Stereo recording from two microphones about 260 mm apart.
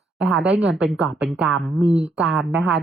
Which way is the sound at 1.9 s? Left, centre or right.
Right.